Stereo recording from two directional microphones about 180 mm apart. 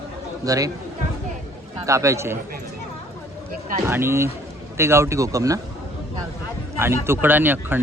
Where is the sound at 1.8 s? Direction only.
15° right (ahead or behind).